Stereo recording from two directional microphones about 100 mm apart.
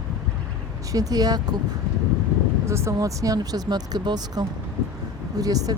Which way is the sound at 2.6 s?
25° right (ahead or behind).